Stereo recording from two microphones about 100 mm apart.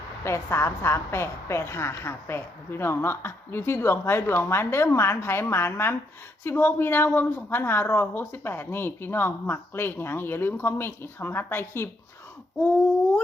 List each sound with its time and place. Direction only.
0.3 s a woman's voice: 25° left (ahead or behind)